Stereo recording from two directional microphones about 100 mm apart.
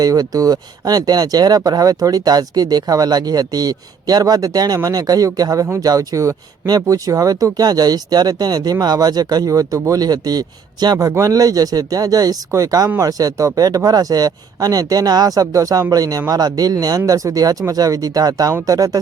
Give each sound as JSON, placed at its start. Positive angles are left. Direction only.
{"t": 0.0, "sound": "speech", "side_deg": -40}